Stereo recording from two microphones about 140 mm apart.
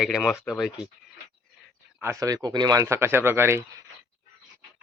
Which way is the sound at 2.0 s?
20° right (ahead or behind).